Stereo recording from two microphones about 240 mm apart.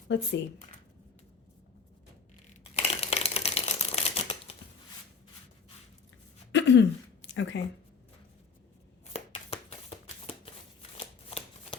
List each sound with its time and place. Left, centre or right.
0.1 s speech: left
2.5 s a sound: left
6.5 s throat clearing: left
9.1 s shuffling cards: left